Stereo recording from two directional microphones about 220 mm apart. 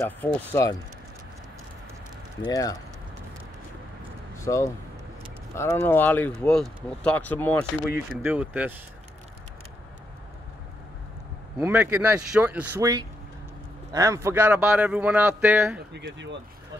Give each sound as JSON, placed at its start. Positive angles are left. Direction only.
{"t": 0.0, "sound": "speech", "side_deg": 10}
{"t": 2.4, "sound": "speech", "side_deg": 15}
{"t": 4.4, "sound": "speech", "side_deg": 15}
{"t": 8.2, "sound": "speech", "side_deg": -5}
{"t": 11.6, "sound": "speech", "side_deg": -10}
{"t": 15.9, "sound": "speech", "side_deg": -55}